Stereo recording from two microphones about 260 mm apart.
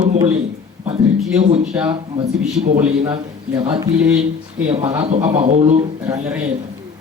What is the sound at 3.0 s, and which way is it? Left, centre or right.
Speech, right.